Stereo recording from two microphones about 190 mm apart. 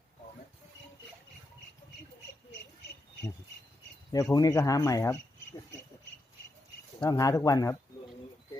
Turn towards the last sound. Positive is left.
turn(degrees=15)  # may be behind; listen again after turning